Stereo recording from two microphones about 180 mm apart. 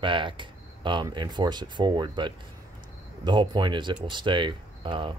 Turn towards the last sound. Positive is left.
turn(degrees=-25)  # may be behind; listen again after turning